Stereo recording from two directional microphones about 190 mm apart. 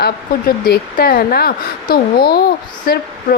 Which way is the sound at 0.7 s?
50° left (ahead or behind).